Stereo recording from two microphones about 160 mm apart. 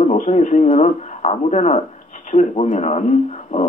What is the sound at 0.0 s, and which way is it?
Speech, 45° left (ahead or behind).